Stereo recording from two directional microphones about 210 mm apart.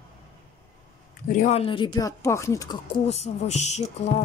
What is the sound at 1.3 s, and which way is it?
Speech, 35° left (ahead or behind).